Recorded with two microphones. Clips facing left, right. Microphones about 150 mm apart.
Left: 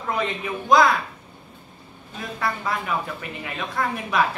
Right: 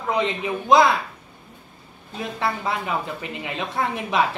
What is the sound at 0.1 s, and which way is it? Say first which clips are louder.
Speech: right 3 dB; 20° right (ahead or behind).